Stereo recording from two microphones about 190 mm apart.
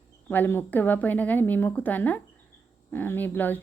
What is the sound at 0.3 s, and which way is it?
Speech, 10° left (ahead or behind).